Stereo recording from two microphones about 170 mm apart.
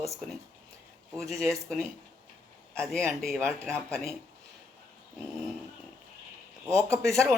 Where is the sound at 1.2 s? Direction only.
Centre (ahead or behind).